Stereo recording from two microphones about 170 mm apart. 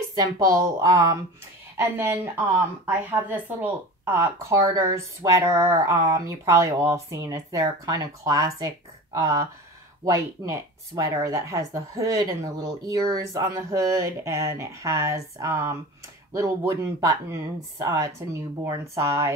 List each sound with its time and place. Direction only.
0.1 s a woman's voice: 20° right (ahead or behind)